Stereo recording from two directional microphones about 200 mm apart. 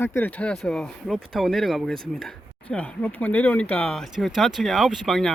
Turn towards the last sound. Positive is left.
turn(degrees=0)  # may be behind; listen again after turning